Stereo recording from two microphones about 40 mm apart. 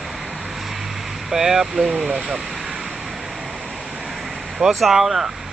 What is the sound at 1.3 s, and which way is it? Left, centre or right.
Speech, centre.